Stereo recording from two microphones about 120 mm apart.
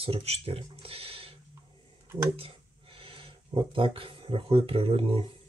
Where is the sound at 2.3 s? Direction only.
50° right (ahead or behind).